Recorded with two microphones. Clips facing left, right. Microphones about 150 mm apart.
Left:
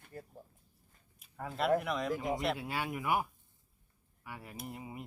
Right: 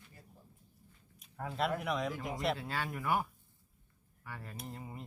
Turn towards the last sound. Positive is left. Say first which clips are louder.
# left 2 dB
turn(degrees=10)  # may be behind; listen again after turning